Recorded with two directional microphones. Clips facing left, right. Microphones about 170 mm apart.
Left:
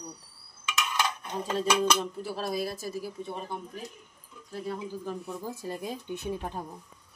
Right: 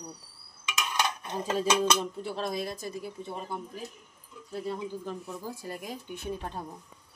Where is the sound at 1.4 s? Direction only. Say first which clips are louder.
Even; 5° right (ahead or behind).